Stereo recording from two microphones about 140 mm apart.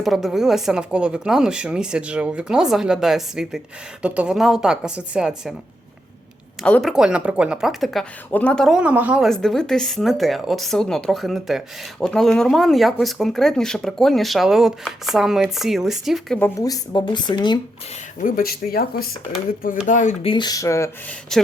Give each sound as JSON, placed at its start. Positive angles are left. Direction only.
{"t": 0.0, "sound": "a woman's voice", "side_deg": 0}
{"t": 6.7, "sound": "speech", "side_deg": 10}
{"t": 6.9, "sound": "a woman's voice", "side_deg": -5}
{"t": 16.4, "sound": "speech", "side_deg": 25}
{"t": 18.2, "sound": "speech", "side_deg": 85}
{"t": 19.5, "sound": "speech", "side_deg": 80}
{"t": 19.9, "sound": "speech", "side_deg": 65}
{"t": 20.2, "sound": "speech", "side_deg": 35}
{"t": 21.1, "sound": "a woman's voice", "side_deg": 5}